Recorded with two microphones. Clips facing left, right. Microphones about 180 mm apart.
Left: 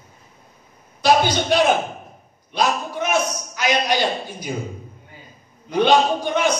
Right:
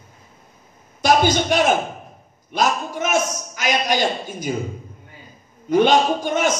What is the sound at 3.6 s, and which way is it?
Speech, 45° right (ahead or behind).